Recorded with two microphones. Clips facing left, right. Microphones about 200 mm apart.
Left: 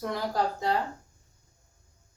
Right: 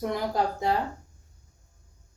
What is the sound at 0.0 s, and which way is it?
Speech, 20° right (ahead or behind).